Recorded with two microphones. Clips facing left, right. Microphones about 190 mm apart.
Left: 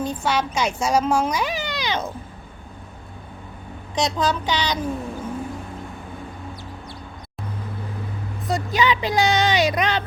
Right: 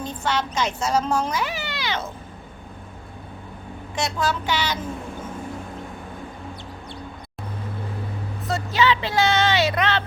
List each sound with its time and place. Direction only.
0.0 s speech: 10° left (ahead or behind)
3.9 s speech: 20° left (ahead or behind)
8.4 s speech: 15° left (ahead or behind)